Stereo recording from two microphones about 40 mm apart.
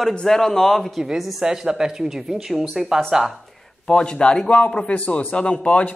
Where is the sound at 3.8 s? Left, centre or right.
Left.